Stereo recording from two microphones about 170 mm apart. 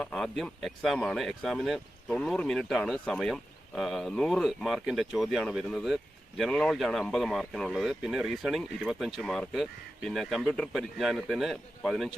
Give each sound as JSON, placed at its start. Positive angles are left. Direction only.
{"t": 0.0, "sound": "speech", "side_deg": 0}